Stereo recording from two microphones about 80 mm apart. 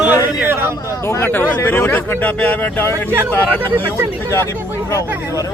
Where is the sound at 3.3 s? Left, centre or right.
Left.